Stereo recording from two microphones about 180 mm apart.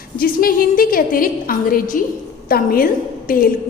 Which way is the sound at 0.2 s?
55° left (ahead or behind).